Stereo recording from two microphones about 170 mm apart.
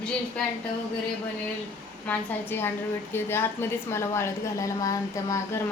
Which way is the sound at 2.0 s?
10° left (ahead or behind).